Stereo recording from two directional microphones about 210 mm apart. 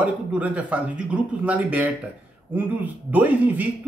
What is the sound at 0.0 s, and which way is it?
Speech, 5° right (ahead or behind).